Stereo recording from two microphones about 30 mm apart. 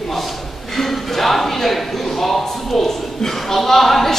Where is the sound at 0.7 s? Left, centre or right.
Centre.